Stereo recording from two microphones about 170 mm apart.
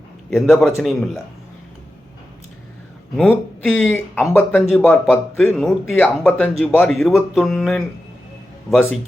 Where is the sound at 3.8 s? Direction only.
10° left (ahead or behind).